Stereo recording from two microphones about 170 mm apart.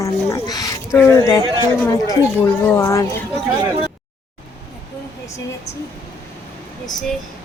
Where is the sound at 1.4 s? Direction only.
30° right (ahead or behind).